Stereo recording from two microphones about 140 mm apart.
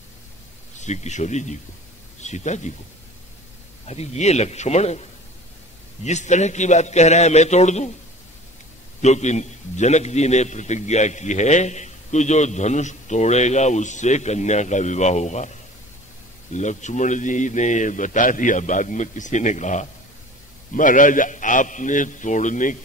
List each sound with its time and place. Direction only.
0.7 s a man's voice: 55° left (ahead or behind)
3.8 s a man's voice: 50° left (ahead or behind)
6.0 s a man's voice: 55° left (ahead or behind)
9.0 s a man's voice: 55° left (ahead or behind)
16.5 s a man's voice: 60° left (ahead or behind)
20.7 s a man's voice: 70° left (ahead or behind)